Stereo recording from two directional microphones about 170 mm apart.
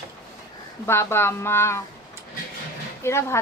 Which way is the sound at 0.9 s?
15° left (ahead or behind).